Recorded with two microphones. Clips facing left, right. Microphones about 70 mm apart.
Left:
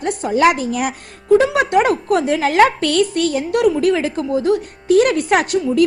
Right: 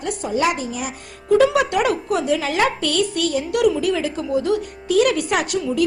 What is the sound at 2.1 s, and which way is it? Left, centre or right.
A woman's voice, left.